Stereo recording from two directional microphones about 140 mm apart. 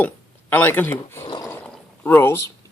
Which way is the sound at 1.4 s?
15° left (ahead or behind).